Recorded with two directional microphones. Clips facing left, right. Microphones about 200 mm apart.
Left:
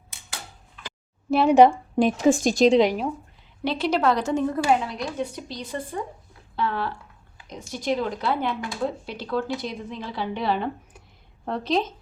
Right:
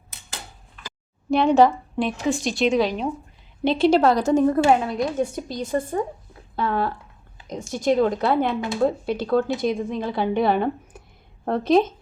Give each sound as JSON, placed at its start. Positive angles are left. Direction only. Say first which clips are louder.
{"t": 1.3, "sound": "speech", "louder": "right 1 dB", "side_deg": 5}
{"t": 1.5, "sound": "a woman's voice", "louder": "left 2 dB", "side_deg": 15}
{"t": 2.0, "sound": "a woman's voice", "louder": "left 5 dB", "side_deg": 45}
{"t": 3.6, "sound": "a woman's voice", "louder": "right 6 dB", "side_deg": -25}